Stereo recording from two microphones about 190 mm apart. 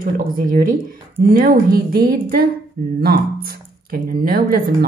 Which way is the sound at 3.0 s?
50° right (ahead or behind).